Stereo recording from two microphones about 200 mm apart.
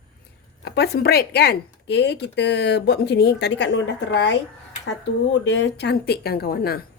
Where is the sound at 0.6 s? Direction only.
55° left (ahead or behind).